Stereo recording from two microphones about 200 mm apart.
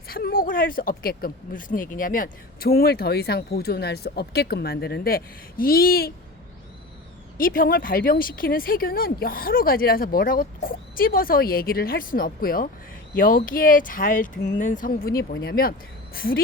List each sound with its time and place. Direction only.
0.1 s speech: 50° left (ahead or behind)
7.3 s speech: 45° left (ahead or behind)